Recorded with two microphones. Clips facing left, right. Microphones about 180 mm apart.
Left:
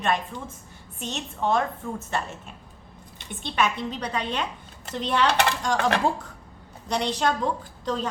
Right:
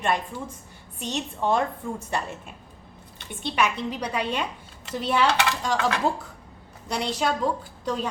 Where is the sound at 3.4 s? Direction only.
10° right (ahead or behind).